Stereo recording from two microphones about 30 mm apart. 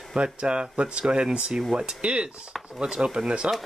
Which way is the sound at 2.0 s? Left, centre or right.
Right.